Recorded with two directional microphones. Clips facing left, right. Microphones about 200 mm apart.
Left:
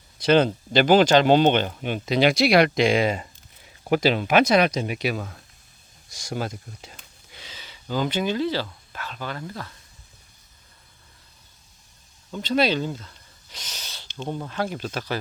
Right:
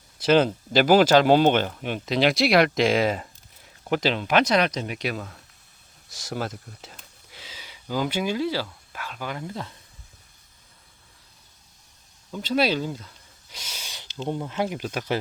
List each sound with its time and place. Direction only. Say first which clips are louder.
0.2 s speech: left 1 dB; 5° right (ahead or behind)
3.8 s speech: left 3 dB; 10° left (ahead or behind); by 9.5 s 10° right (ahead or behind)
9.5 s speech: right 2 dB; 20° right (ahead or behind)
12.3 s speech: left 1 dB; 5° right (ahead or behind)